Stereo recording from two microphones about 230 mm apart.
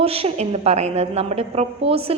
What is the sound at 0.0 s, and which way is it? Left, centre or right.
A woman's voice, right.